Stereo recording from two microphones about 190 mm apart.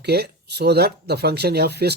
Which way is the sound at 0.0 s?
60° right (ahead or behind).